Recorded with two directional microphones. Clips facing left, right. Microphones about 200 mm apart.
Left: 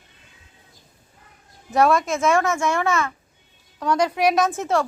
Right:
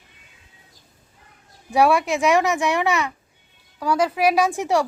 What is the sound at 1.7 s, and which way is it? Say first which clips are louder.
A woman's voice: right 1 dB; 15° right (ahead or behind).